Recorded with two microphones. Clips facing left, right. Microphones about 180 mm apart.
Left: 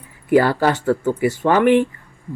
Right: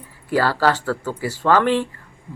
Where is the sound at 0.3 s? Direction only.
20° left (ahead or behind).